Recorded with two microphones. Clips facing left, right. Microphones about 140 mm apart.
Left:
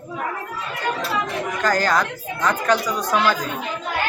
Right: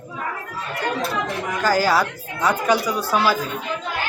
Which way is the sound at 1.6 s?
5° right (ahead or behind).